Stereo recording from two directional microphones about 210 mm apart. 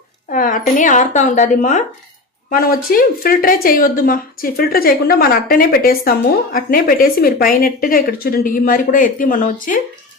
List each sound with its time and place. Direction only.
0.3 s a woman's voice: 40° left (ahead or behind)